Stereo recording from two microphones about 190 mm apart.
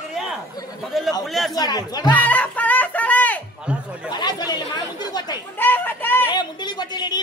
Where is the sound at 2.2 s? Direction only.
10° left (ahead or behind).